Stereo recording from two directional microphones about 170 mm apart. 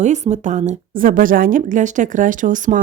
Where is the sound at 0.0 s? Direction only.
45° right (ahead or behind).